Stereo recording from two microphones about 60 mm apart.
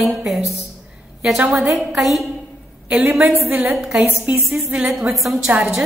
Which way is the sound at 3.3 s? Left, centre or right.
Right.